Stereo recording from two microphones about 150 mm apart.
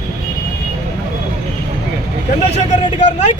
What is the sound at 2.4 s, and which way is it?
Vehicle, 50° left (ahead or behind).